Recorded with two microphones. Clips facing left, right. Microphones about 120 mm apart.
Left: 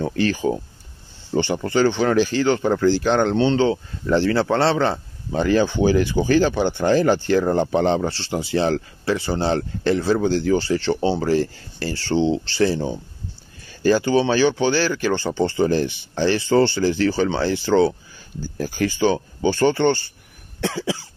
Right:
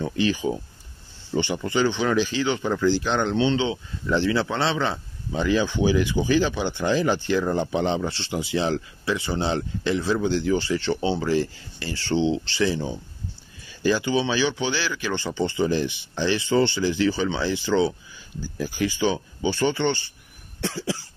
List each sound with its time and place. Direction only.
0.1 s speech: 60° left (ahead or behind)
1.3 s speech: 45° left (ahead or behind)